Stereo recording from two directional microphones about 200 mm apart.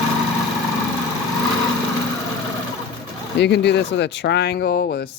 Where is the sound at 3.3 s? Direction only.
60° left (ahead or behind).